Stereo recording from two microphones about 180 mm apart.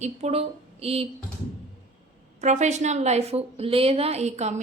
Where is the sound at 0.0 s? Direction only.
35° right (ahead or behind).